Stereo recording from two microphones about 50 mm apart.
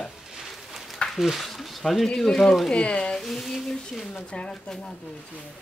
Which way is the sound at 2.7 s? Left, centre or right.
Left.